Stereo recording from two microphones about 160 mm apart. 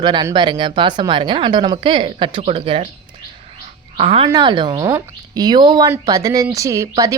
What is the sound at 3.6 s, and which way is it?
Bird, 35° right (ahead or behind).